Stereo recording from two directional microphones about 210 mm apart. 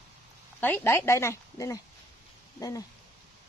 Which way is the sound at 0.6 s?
10° left (ahead or behind).